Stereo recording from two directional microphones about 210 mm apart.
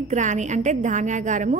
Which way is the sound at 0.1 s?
35° right (ahead or behind).